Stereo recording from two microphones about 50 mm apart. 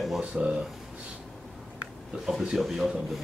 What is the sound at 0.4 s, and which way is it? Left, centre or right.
Speech, centre.